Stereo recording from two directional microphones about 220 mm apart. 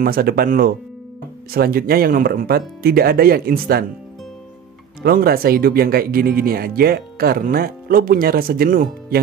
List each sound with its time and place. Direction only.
0.0 s speech: 45° right (ahead or behind)
5.0 s speech: 45° right (ahead or behind)